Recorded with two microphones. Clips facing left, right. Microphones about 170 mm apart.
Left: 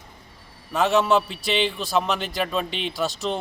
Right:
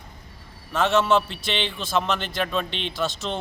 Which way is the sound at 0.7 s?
Centre (ahead or behind).